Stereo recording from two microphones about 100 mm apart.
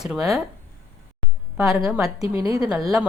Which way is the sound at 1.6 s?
5° right (ahead or behind).